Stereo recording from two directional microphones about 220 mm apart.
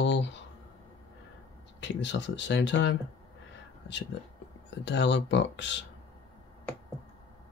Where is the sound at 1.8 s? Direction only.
55° left (ahead or behind).